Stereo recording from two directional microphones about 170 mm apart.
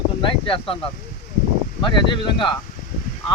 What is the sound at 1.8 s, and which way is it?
Speech, 30° left (ahead or behind).